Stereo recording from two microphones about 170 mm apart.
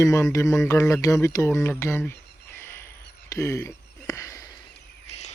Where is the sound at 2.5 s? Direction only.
15° left (ahead or behind).